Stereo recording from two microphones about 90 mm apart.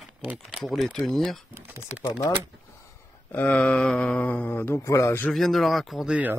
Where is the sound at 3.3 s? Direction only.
15° left (ahead or behind).